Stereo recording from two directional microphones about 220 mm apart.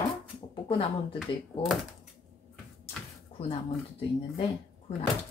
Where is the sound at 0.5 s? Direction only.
20° left (ahead or behind).